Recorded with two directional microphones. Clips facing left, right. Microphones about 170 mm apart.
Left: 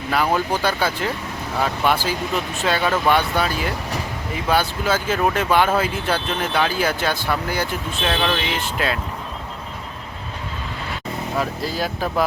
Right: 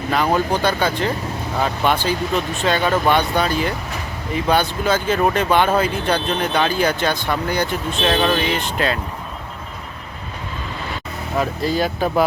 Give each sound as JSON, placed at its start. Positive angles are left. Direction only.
{"t": 0.1, "sound": "speech", "side_deg": 5}
{"t": 11.3, "sound": "speech", "side_deg": 0}